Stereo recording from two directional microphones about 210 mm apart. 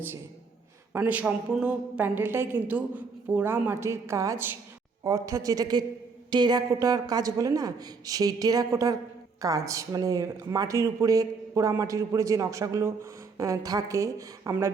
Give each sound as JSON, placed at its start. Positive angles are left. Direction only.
{"t": 0.9, "sound": "speech", "side_deg": -5}